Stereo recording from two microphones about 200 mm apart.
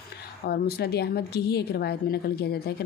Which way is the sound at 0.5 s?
55° left (ahead or behind).